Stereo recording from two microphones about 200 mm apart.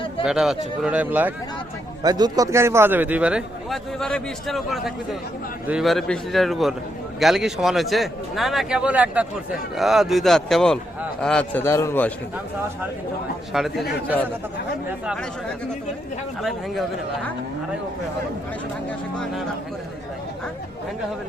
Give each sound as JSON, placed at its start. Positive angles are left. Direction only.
{"t": 0.3, "sound": "a man's voice", "side_deg": 0}
{"t": 2.0, "sound": "a man's voice", "side_deg": -20}
{"t": 13.5, "sound": "a man's voice", "side_deg": 0}
{"t": 16.4, "sound": "a man's voice", "side_deg": 0}